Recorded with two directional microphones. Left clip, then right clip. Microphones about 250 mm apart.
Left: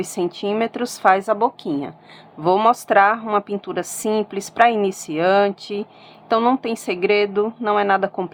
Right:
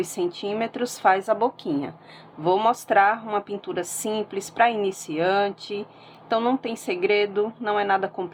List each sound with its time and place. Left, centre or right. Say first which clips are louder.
0.0 s a woman's voice: left 3 dB; centre